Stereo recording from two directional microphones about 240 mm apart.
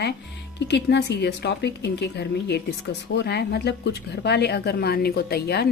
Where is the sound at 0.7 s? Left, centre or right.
Left.